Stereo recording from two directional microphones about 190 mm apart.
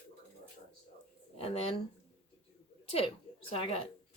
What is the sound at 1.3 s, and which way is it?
Speech, 30° left (ahead or behind).